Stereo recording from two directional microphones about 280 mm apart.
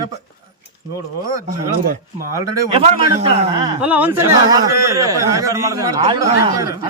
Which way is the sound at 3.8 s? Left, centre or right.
Centre.